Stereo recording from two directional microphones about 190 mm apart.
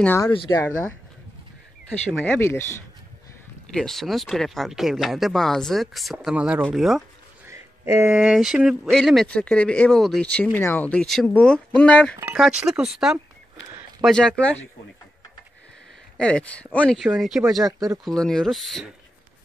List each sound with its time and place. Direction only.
0.0 s speech: 10° left (ahead or behind)
0.3 s speech: 25° left (ahead or behind)
2.2 s speech: 10° left (ahead or behind)
3.7 s speech: centre (ahead or behind)
7.4 s speech: 15° right (ahead or behind); by 14.5 s 5° left (ahead or behind)
16.2 s speech: 5° left (ahead or behind)